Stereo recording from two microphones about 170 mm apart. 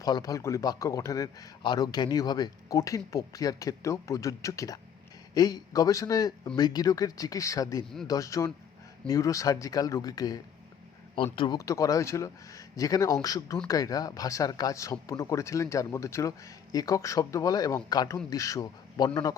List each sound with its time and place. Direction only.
0.0 s speech: 20° left (ahead or behind)